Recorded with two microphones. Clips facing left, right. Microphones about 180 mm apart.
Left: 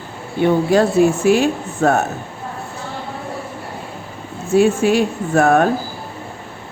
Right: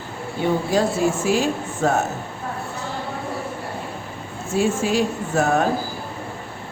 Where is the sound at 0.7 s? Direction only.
65° left (ahead or behind).